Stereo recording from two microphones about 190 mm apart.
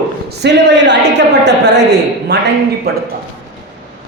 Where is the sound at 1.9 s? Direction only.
60° right (ahead or behind).